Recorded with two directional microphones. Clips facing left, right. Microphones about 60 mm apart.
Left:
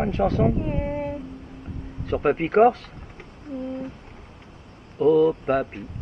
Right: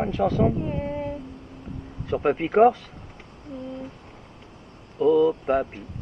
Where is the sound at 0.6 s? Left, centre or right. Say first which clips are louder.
Left 2 dB; left.